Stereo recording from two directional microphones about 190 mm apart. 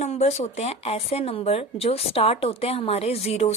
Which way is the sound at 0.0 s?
35° left (ahead or behind).